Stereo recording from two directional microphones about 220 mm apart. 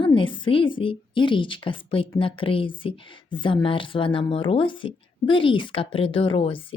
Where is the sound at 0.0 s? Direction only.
25° left (ahead or behind).